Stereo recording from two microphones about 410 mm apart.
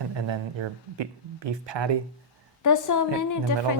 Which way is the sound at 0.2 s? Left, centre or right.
Right.